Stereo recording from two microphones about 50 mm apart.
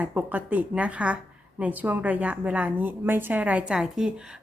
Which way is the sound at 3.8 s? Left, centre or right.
Centre.